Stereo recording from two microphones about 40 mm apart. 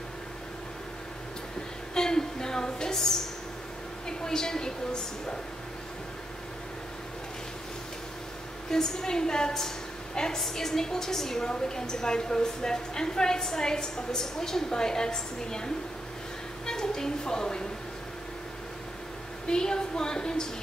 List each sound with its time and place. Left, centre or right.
2.0 s a sound: centre
4.2 s a woman's voice: centre
8.6 s a woman's voice: centre
19.4 s a woman's voice: centre